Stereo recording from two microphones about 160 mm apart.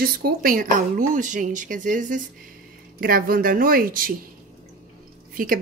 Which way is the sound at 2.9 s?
65° right (ahead or behind).